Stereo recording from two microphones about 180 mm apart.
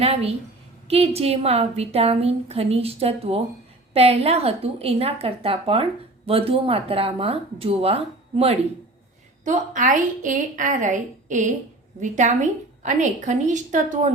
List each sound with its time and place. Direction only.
0.0 s a woman's voice: 35° right (ahead or behind)